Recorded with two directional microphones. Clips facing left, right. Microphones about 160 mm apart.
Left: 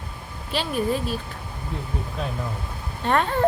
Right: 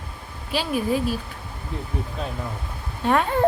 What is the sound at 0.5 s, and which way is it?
Speech, 10° right (ahead or behind).